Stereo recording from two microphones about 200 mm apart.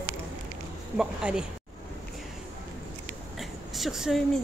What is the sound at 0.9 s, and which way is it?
Speech, 5° right (ahead or behind).